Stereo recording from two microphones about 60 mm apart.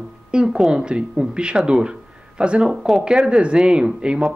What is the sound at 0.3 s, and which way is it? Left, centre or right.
Speech, centre.